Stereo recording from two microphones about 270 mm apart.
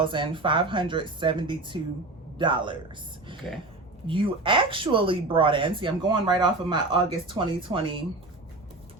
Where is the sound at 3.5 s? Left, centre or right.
Centre.